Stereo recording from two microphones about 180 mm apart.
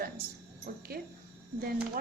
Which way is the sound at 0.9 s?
60° right (ahead or behind).